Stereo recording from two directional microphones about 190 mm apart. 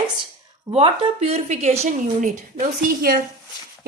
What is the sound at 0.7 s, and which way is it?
A woman's voice, 30° right (ahead or behind).